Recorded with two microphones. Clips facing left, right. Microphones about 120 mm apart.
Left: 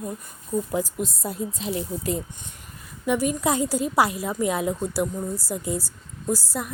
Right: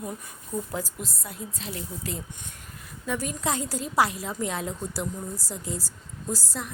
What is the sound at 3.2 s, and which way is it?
A woman's voice, 5° left (ahead or behind).